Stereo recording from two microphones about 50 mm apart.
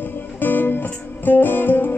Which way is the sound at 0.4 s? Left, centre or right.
Left.